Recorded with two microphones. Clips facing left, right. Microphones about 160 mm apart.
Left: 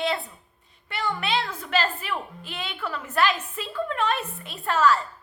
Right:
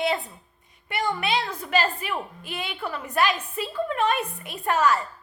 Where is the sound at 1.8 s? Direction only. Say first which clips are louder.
Right 1 dB; 10° right (ahead or behind).